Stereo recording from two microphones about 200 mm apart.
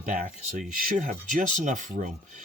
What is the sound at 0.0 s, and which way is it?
Speech, 40° right (ahead or behind).